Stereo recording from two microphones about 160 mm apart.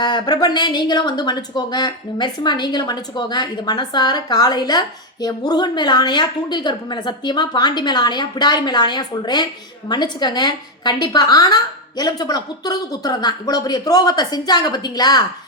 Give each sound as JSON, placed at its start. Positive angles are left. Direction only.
{"t": 0.0, "sound": "speech", "side_deg": 25}